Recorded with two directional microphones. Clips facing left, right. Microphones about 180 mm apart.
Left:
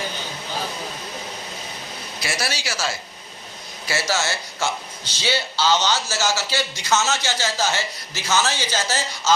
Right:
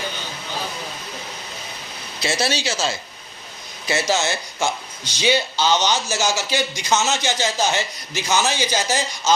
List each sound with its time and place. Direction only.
2.2 s a man's voice: 25° right (ahead or behind)